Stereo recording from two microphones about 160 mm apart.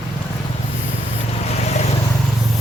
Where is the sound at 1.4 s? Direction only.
45° left (ahead or behind).